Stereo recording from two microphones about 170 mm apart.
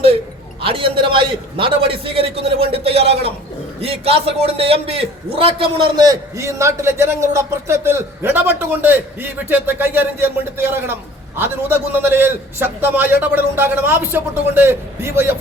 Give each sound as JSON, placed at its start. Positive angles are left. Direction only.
{"t": 0.6, "sound": "a man's voice", "side_deg": -30}